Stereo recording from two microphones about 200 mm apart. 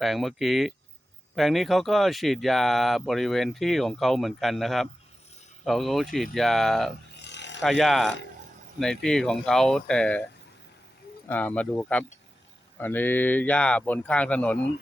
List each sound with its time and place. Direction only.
0.0 s speech: centre (ahead or behind)
7.2 s rub: 60° left (ahead or behind)
7.6 s speech: centre (ahead or behind)
11.3 s speech: 10° left (ahead or behind)